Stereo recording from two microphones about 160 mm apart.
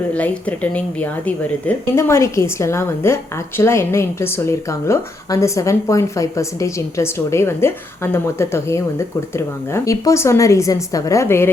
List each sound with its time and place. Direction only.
0.1 s speech: 10° left (ahead or behind)